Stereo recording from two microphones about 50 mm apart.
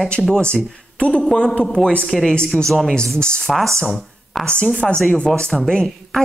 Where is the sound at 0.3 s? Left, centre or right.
Centre.